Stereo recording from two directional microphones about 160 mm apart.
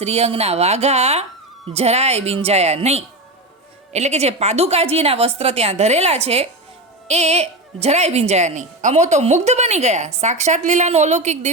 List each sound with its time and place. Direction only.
0.0 s a woman's voice: 40° right (ahead or behind)